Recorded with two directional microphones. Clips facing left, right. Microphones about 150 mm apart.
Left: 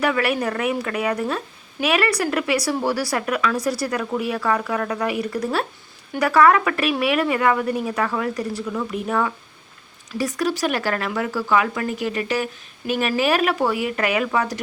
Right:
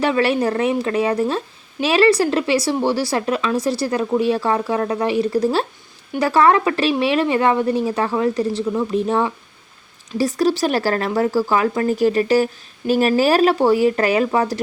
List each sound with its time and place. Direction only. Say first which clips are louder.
0.0 s speech: right 4 dB; 30° right (ahead or behind)